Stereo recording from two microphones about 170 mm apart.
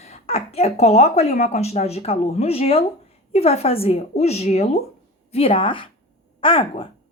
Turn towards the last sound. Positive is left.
turn(degrees=30)  # may be behind; listen again after turning